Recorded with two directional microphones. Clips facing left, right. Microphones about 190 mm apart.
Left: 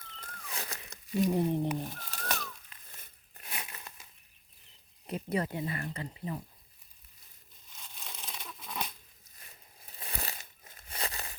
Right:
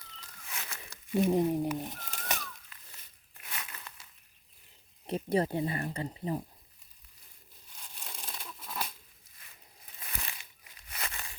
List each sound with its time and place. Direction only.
0.0 s cat: 50° left (ahead or behind)
0.4 s cat: 35° left (ahead or behind)
1.2 s speech: 20° right (ahead or behind)
1.9 s pigeon: 15° right (ahead or behind)
2.7 s a sound: 20° left (ahead or behind)
3.6 s crumpling: 20° left (ahead or behind)
5.0 s speech: 30° right (ahead or behind)
7.8 s crumpling: 5° right (ahead or behind)
10.0 s crumpling: 35° left (ahead or behind)
10.8 s a sound: 30° left (ahead or behind)